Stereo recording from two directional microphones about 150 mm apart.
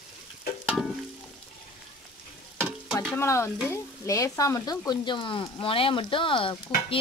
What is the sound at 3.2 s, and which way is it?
Speech, 15° left (ahead or behind).